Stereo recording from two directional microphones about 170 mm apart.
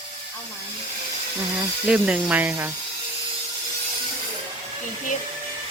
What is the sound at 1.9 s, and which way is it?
Speech, 10° right (ahead or behind).